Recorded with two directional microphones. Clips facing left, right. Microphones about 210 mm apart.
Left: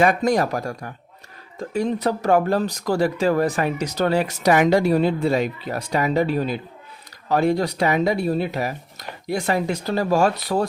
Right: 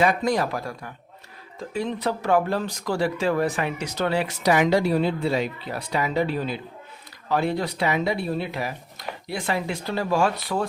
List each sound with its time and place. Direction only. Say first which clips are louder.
0.0 s speech: left 3 dB; 45° left (ahead or behind)